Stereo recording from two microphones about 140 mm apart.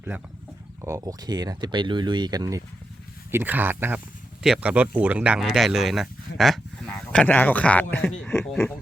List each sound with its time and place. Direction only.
0.8 s speech: 20° right (ahead or behind)
3.3 s speech: 15° right (ahead or behind); by 8.4 s 5° left (ahead or behind)